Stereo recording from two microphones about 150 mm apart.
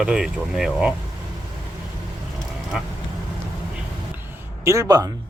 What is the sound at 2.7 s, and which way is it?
Speech, 5° right (ahead or behind).